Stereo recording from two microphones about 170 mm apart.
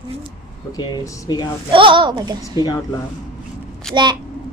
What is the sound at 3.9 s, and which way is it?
Speech, 25° right (ahead or behind).